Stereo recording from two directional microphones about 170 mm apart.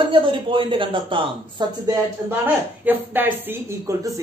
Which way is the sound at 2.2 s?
10° right (ahead or behind).